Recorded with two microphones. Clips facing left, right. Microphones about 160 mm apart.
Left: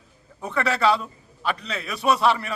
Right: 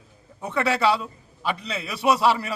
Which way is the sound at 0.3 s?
5° right (ahead or behind).